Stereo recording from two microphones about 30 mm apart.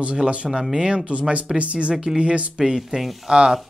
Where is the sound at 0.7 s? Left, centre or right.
Right.